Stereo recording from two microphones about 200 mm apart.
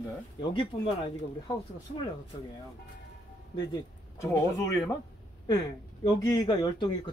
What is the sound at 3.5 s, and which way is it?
Speech, 15° left (ahead or behind).